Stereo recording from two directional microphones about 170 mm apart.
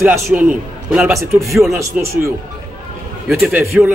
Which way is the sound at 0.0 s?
15° right (ahead or behind).